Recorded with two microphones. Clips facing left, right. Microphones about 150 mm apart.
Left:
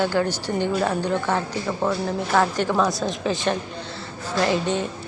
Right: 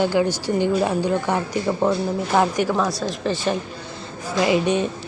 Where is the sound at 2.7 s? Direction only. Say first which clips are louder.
Even; centre (ahead or behind).